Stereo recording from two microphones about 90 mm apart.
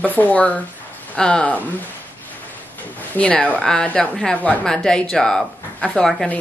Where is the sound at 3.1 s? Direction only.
15° left (ahead or behind).